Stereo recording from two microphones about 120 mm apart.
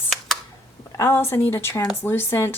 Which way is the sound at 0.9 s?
20° left (ahead or behind).